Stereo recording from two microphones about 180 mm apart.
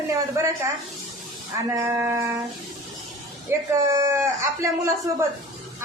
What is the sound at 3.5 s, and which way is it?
A man's voice, 15° right (ahead or behind).